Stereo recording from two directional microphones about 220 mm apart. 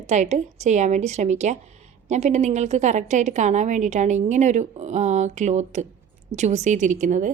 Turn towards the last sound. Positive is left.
turn(degrees=-35)  # may be behind; listen again after turning